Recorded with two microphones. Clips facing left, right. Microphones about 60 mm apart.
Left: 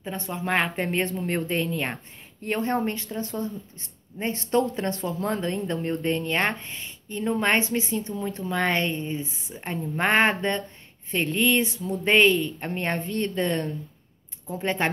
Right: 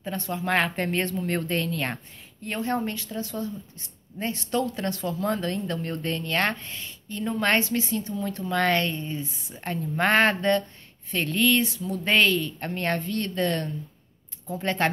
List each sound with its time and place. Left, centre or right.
0.0 s a woman's voice: centre
2.4 s a woman's voice: left; by 14.9 s centre